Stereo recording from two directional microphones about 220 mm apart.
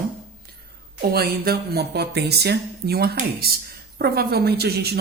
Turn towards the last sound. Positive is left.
turn(degrees=-45)  # may be behind; listen again after turning